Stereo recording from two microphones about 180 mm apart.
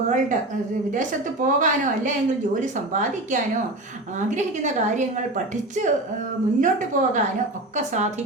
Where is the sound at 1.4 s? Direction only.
45° right (ahead or behind).